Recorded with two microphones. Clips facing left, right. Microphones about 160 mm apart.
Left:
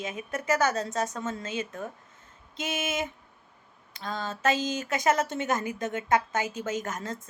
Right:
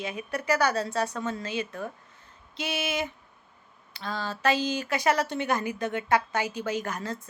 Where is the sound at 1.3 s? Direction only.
35° right (ahead or behind).